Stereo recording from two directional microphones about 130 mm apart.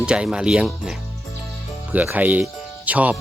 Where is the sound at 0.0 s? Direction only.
5° right (ahead or behind).